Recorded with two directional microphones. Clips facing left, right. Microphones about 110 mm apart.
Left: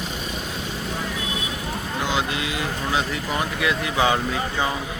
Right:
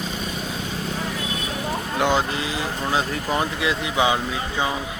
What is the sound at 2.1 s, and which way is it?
Speech, 35° right (ahead or behind).